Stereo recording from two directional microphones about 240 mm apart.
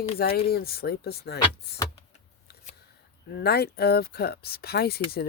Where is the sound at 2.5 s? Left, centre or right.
Left.